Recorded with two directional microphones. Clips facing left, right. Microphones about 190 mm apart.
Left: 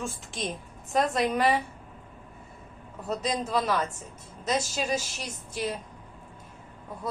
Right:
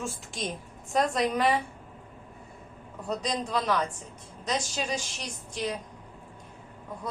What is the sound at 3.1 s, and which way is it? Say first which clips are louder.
A woman's voice: left 1 dB; 5° left (ahead or behind).